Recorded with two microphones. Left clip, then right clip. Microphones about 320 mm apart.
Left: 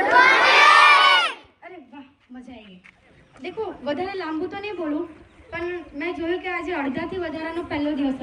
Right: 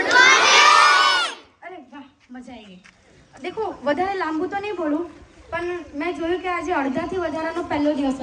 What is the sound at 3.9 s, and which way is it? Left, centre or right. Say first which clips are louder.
Speech: right 5 dB; right.